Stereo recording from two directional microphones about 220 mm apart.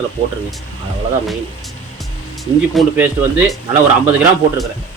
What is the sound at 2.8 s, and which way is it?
Speech, 5° right (ahead or behind).